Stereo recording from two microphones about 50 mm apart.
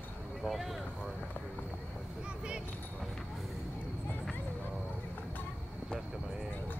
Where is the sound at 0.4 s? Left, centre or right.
Centre.